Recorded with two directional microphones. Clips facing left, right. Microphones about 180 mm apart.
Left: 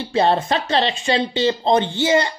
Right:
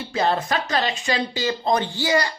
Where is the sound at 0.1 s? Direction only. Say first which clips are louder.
Left 4 dB; 30° left (ahead or behind).